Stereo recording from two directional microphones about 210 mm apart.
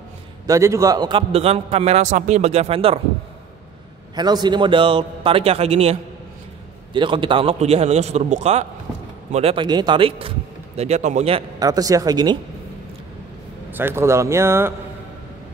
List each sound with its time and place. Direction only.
0.5 s a man's voice: 15° right (ahead or behind)
4.1 s a man's voice: 20° right (ahead or behind)
11.6 s speech: 15° right (ahead or behind)
13.7 s speech: 10° right (ahead or behind)